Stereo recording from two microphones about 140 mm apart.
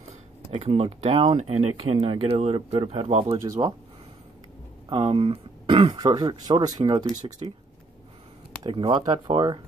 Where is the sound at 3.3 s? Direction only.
25° right (ahead or behind).